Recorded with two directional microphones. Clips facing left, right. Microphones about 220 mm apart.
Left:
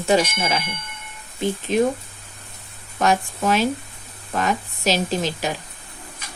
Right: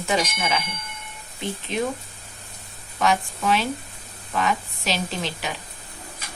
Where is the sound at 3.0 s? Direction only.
45° left (ahead or behind).